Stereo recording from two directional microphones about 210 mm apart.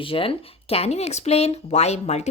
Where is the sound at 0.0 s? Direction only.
25° left (ahead or behind).